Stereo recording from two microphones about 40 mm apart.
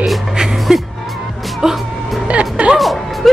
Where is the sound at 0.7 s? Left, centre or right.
Centre.